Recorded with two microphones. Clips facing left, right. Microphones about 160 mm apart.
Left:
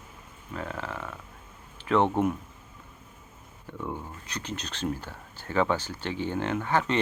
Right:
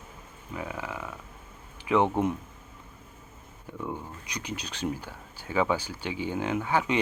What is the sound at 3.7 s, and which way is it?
Speech, 10° right (ahead or behind).